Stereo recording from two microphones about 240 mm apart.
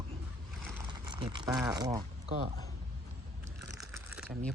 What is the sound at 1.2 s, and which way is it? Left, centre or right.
Speech, centre.